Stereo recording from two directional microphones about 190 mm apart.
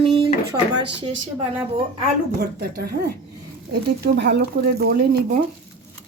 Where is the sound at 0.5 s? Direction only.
25° right (ahead or behind).